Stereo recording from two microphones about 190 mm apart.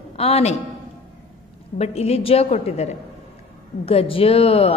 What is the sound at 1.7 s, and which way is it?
Speech, 35° left (ahead or behind).